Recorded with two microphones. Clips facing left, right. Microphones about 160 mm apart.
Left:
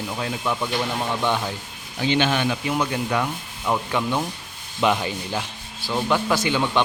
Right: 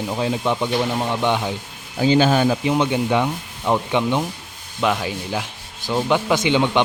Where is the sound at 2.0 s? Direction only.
40° right (ahead or behind).